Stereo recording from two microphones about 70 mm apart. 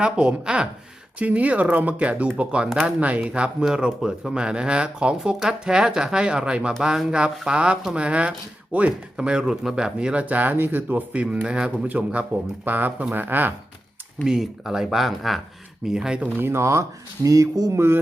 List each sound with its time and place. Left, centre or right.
0.0 s speech: centre
11.9 s speech: right
14.3 s speech: centre
16.4 s speech: right
17.2 s a sound: right